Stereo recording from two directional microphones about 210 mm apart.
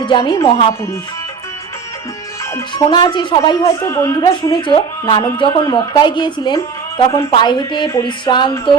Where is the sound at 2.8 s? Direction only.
20° left (ahead or behind).